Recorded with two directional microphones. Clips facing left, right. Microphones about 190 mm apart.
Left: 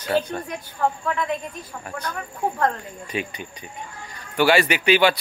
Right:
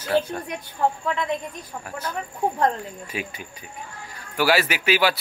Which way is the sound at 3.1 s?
5° right (ahead or behind).